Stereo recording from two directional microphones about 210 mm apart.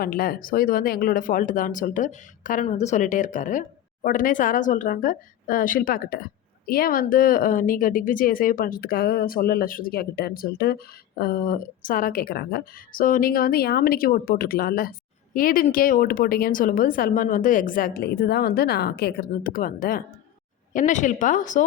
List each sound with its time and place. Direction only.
0.0 s speech: 45° left (ahead or behind)